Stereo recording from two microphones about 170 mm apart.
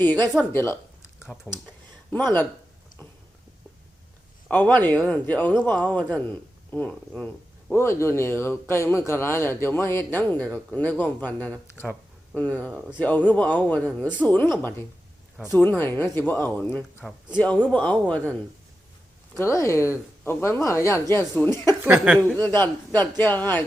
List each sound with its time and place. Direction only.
0.0 s a man's voice: 10° left (ahead or behind)
4.4 s a man's voice: 10° left (ahead or behind)
15.5 s a man's voice: 10° left (ahead or behind)
19.4 s a man's voice: 15° left (ahead or behind)
21.8 s a woman's voice: 10° right (ahead or behind)
22.4 s a man's voice: 10° left (ahead or behind)